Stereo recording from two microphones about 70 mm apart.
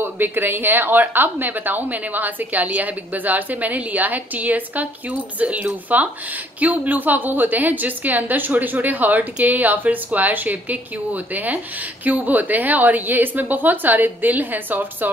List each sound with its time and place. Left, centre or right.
0.0 s speech: right